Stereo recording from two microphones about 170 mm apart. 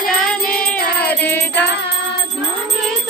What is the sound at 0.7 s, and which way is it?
Music, 10° left (ahead or behind).